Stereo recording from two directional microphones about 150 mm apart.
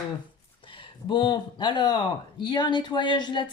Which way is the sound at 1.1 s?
30° left (ahead or behind).